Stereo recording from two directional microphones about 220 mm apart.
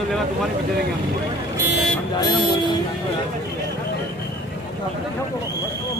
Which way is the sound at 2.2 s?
20° left (ahead or behind).